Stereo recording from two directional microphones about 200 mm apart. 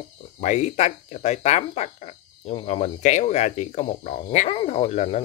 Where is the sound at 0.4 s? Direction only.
35° left (ahead or behind).